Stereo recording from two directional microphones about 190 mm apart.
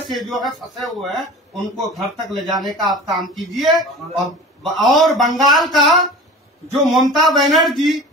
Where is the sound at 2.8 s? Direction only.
Centre (ahead or behind).